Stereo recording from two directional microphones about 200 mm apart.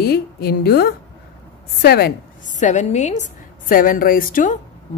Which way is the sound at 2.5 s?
35° left (ahead or behind).